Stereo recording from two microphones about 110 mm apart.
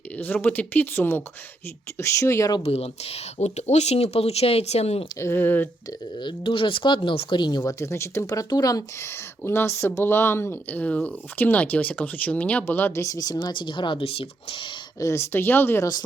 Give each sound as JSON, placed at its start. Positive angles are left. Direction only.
{"t": 0.2, "sound": "speech", "side_deg": 15}
{"t": 2.6, "sound": "speech", "side_deg": 70}
{"t": 5.2, "sound": "speech", "side_deg": 20}
{"t": 6.2, "sound": "speech", "side_deg": 55}
{"t": 9.4, "sound": "speech", "side_deg": 20}
{"t": 15.0, "sound": "speech", "side_deg": 25}